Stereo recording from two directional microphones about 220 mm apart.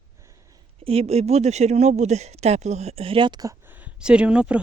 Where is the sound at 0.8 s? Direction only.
25° right (ahead or behind).